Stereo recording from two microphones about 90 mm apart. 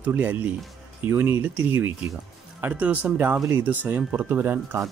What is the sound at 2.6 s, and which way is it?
Speech, 15° right (ahead or behind).